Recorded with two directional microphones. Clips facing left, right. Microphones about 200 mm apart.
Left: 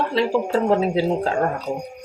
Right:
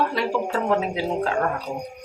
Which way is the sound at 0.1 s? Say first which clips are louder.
Left 5 dB; 25° left (ahead or behind).